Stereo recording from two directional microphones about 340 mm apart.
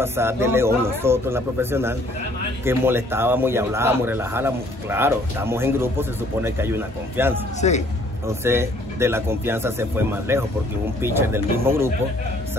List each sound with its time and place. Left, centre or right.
0.0 s a man's voice: centre
7.6 s speech: centre
8.3 s a man's voice: centre